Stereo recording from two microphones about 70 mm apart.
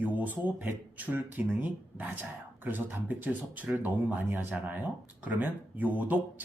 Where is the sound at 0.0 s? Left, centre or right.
Right.